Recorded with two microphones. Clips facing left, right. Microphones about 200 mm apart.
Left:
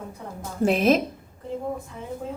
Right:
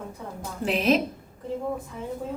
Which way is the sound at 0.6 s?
45° left (ahead or behind).